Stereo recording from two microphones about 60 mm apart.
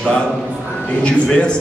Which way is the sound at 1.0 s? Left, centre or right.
Centre.